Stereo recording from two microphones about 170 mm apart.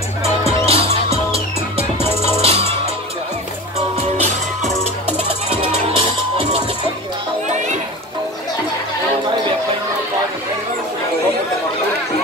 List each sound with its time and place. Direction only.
0.7 s music: 35° right (ahead or behind)
4.2 s music: 40° right (ahead or behind)